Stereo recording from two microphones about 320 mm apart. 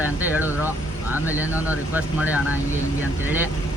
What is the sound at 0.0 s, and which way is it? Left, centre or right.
Speech, centre.